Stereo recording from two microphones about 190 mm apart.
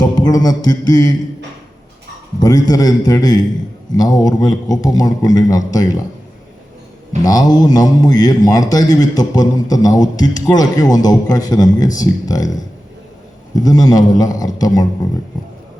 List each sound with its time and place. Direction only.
0.0 s a man's voice: 20° left (ahead or behind)
2.4 s a man's voice: 20° left (ahead or behind)
7.3 s a man's voice: 20° left (ahead or behind)